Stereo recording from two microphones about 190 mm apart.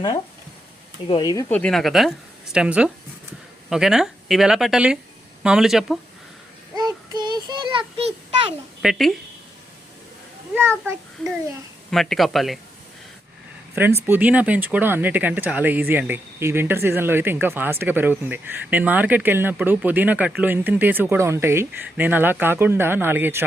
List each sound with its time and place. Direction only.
1.0 s speech: 20° left (ahead or behind); by 6.0 s centre (ahead or behind)
6.7 s child singing: 20° right (ahead or behind)
8.8 s speech: centre (ahead or behind)
10.5 s speech: 10° right (ahead or behind)
11.9 s speech: centre (ahead or behind)
13.7 s speech: 10° right (ahead or behind)